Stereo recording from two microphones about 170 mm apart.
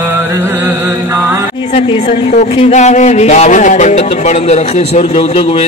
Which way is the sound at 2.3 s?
45° left (ahead or behind).